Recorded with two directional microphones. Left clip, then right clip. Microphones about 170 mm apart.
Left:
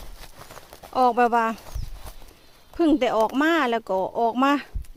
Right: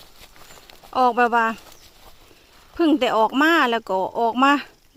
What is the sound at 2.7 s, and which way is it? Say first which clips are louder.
Speech: right 2 dB; 10° left (ahead or behind).